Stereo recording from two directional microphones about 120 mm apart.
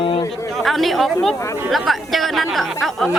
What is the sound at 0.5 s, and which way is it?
A woman's voice, centre (ahead or behind).